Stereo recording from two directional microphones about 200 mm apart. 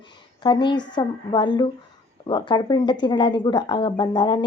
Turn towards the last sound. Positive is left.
turn(degrees=20)  # may be behind; listen again after turning